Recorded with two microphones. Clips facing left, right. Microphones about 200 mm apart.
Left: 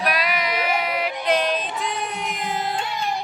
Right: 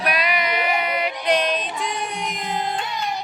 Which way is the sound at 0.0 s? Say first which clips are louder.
Right 1 dB; centre (ahead or behind).